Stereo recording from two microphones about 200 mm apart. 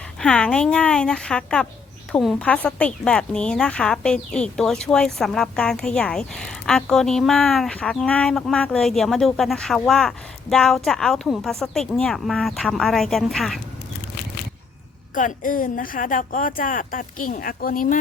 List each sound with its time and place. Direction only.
0.2 s a woman's voice: 5° left (ahead or behind)
15.1 s a woman's voice: 40° left (ahead or behind)